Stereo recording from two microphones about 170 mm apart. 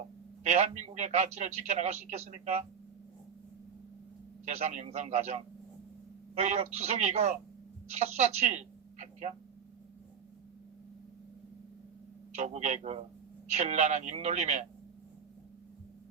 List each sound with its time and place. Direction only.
0.4 s a man's voice: 40° right (ahead or behind)
4.4 s a man's voice: 40° right (ahead or behind)
12.4 s a man's voice: 40° right (ahead or behind)